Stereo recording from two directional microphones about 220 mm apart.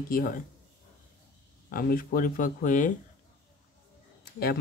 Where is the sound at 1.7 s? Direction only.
40° left (ahead or behind).